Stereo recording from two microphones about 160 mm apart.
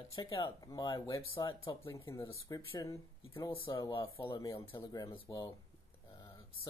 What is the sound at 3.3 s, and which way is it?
Speech, 30° left (ahead or behind).